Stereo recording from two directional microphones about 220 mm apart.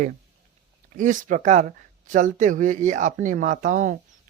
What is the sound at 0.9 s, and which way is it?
Speech, 35° right (ahead or behind).